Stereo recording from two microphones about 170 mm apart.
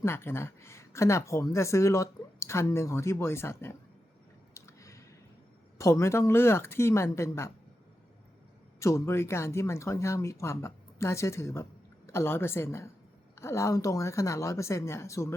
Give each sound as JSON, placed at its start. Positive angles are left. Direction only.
{"t": 0.0, "sound": "speech", "side_deg": 15}
{"t": 4.5, "sound": "a sound", "side_deg": 15}
{"t": 5.7, "sound": "speech", "side_deg": 15}
{"t": 8.8, "sound": "speech", "side_deg": 15}